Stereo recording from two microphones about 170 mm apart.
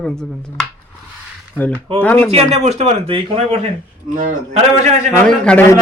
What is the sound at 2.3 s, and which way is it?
Speech, 40° right (ahead or behind).